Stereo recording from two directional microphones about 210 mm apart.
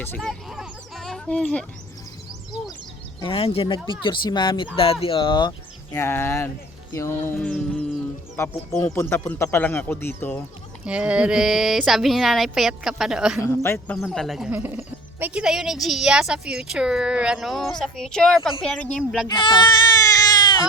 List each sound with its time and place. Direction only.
0.0 s a sound: 5° left (ahead or behind)
3.2 s speech: 25° left (ahead or behind); by 10.4 s 10° left (ahead or behind)
10.8 s speech: 5° right (ahead or behind)
13.4 s speech: 10° left (ahead or behind)
19.3 s baby cry: 20° left (ahead or behind)